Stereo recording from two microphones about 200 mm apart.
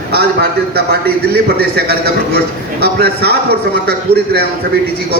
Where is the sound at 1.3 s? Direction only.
55° right (ahead or behind).